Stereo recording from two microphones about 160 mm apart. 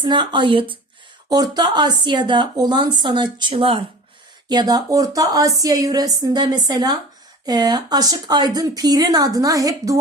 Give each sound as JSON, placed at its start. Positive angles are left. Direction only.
{"t": 0.0, "sound": "speech", "side_deg": -30}